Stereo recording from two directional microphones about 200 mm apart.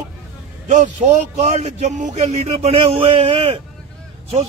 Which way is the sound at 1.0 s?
35° right (ahead or behind).